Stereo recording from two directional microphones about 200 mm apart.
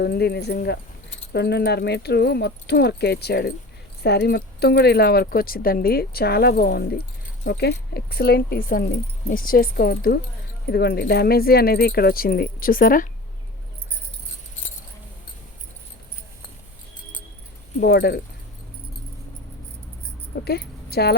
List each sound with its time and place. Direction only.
0.0 s speech: 55° left (ahead or behind)
17.7 s speech: 55° left (ahead or behind)
20.3 s speech: 55° left (ahead or behind)